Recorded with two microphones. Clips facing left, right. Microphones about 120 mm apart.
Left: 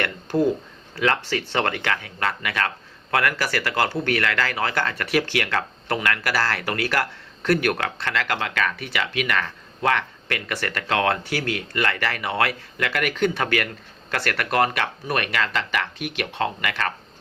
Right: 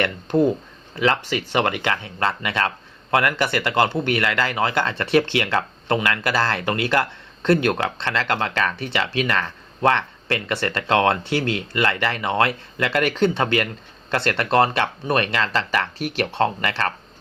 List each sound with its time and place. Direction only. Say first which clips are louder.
0.0 s speech: right 3 dB; 20° right (ahead or behind)